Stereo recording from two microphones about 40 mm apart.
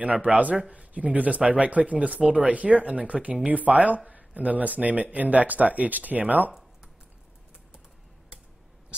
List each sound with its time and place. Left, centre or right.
0.0 s speech: right